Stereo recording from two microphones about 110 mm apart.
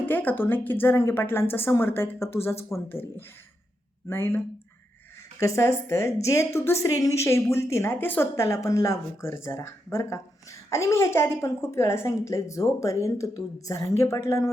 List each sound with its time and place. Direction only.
0.0 s a woman's voice: 15° left (ahead or behind)
5.4 s a woman's voice: 25° left (ahead or behind)